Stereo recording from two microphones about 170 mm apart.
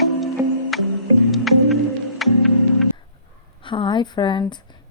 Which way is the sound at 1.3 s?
Centre (ahead or behind).